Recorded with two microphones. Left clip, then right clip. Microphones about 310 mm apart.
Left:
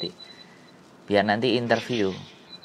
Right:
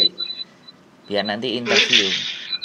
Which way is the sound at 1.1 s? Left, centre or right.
Left.